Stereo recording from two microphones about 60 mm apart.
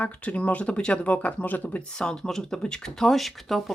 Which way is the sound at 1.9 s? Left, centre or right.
Centre.